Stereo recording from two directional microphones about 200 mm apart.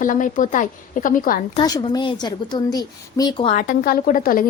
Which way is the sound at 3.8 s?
45° left (ahead or behind).